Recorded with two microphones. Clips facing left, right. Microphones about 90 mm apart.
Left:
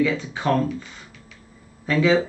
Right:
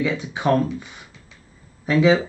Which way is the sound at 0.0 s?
20° right (ahead or behind).